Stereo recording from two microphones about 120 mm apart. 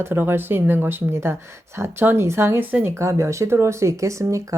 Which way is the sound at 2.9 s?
25° right (ahead or behind).